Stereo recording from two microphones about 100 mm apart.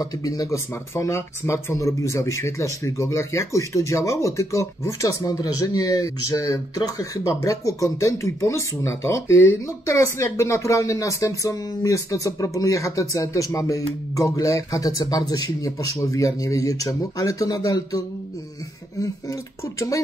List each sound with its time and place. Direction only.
0.0 s speech: 35° left (ahead or behind)